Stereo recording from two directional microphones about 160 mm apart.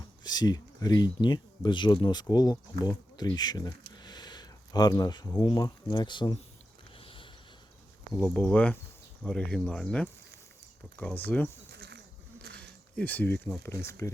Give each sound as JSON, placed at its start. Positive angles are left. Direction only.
{"t": 0.3, "sound": "speech", "side_deg": 25}
{"t": 7.0, "sound": "sniff", "side_deg": 35}
{"t": 8.1, "sound": "speech", "side_deg": 10}
{"t": 11.7, "sound": "a sound", "side_deg": -90}
{"t": 12.5, "sound": "speech", "side_deg": 10}